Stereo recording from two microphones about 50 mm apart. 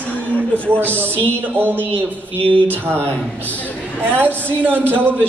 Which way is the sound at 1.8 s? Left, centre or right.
Left.